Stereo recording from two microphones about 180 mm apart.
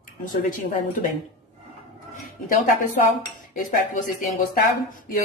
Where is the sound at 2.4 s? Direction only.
50° left (ahead or behind).